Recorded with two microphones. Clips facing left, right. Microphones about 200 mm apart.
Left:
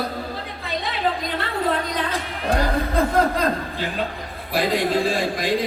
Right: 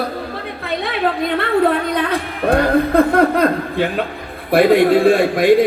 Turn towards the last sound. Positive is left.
turn(degrees=-60)  # may be behind; listen again after turning